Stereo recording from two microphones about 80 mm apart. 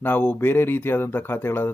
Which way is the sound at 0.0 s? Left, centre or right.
Left.